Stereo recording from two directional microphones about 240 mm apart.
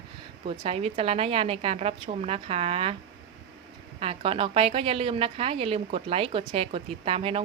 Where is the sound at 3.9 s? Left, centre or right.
Right.